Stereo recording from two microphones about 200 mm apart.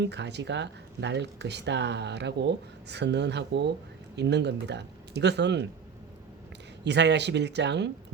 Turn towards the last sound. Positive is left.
turn(degrees=-60)  # may be behind; listen again after turning